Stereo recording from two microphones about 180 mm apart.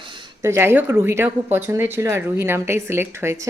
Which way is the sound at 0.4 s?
15° right (ahead or behind).